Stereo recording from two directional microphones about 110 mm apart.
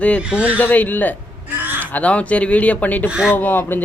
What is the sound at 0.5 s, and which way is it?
Speech, 15° left (ahead or behind).